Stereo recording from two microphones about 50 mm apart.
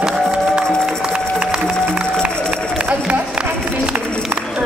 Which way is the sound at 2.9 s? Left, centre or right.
Right.